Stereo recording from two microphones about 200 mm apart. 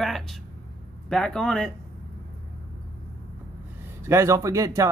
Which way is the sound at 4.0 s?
15° right (ahead or behind).